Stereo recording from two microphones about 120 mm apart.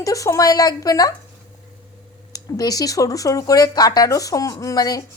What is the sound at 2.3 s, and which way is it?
Speech, 30° left (ahead or behind).